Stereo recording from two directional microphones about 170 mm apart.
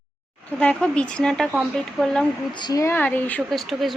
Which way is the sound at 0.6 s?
5° left (ahead or behind).